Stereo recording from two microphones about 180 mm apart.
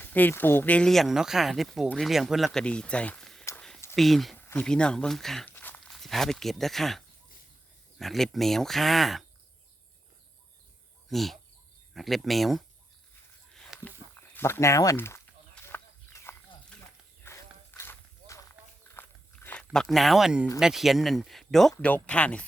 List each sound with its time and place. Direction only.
0.0 s speech: 10° left (ahead or behind)
3.4 s a sound: 10° left (ahead or behind)
3.9 s speech: centre (ahead or behind)
11.1 s speech: centre (ahead or behind)
13.5 s a sound: 5° left (ahead or behind)
18.9 s walk: 10° left (ahead or behind)
19.7 s speech: centre (ahead or behind)